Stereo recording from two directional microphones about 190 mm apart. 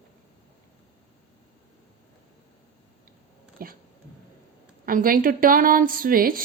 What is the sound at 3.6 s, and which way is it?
Speech, 50° right (ahead or behind).